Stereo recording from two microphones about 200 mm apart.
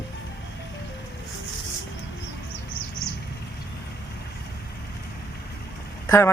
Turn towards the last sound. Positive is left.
turn(degrees=10)  # may be behind; listen again after turning